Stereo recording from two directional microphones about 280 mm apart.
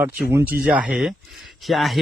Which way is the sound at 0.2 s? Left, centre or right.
Centre.